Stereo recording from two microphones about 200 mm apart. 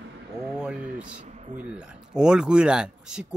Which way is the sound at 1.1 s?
40° right (ahead or behind).